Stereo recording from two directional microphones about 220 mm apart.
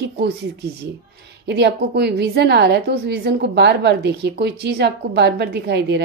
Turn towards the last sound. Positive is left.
turn(degrees=-50)  # may be behind; listen again after turning